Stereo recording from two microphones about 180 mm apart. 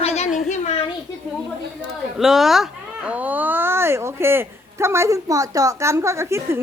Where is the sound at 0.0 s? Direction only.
40° left (ahead or behind).